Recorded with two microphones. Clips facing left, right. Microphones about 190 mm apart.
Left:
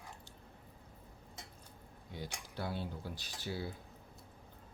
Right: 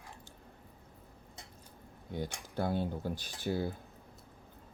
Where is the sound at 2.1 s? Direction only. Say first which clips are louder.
Right 7 dB; 50° right (ahead or behind).